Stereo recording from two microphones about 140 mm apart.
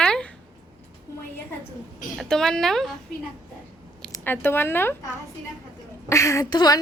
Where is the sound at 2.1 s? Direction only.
Centre (ahead or behind).